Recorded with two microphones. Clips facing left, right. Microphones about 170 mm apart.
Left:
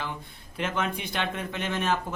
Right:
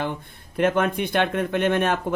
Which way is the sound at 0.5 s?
55° right (ahead or behind).